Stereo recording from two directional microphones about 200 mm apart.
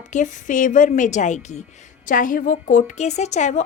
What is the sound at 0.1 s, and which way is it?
A woman's voice, 40° left (ahead or behind).